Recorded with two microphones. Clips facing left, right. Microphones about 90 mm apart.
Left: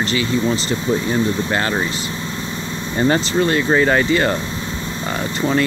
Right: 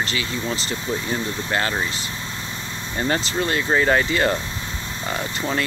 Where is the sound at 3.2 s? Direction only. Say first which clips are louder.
Left 6 dB; 5° right (ahead or behind).